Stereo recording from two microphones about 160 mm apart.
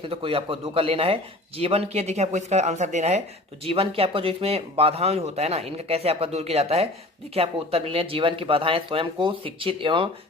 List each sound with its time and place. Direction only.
0.0 s speech: 35° right (ahead or behind)